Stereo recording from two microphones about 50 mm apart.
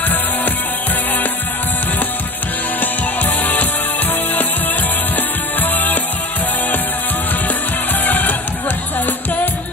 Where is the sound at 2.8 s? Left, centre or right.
Left.